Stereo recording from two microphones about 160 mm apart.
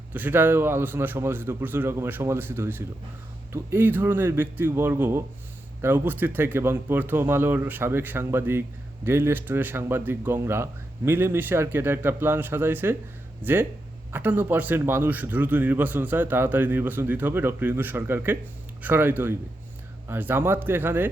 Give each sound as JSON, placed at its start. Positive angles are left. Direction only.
{"t": 0.1, "sound": "a man's voice", "side_deg": -10}